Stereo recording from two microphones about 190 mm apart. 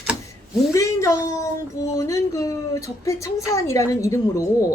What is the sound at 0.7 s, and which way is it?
A woman's voice, 15° left (ahead or behind).